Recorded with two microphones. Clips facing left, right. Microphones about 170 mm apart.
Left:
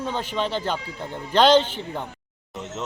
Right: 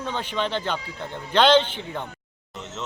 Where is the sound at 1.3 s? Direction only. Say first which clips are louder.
Left 1 dB; 40° left (ahead or behind).